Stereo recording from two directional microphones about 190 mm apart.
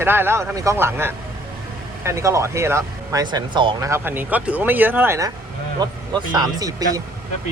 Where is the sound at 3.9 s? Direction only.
10° right (ahead or behind).